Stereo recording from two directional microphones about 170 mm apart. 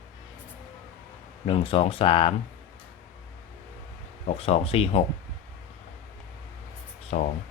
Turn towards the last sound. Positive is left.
turn(degrees=40)  # may be behind; listen again after turning